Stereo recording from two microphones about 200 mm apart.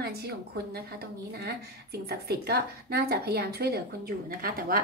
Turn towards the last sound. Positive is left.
turn(degrees=-45)  # may be behind; listen again after turning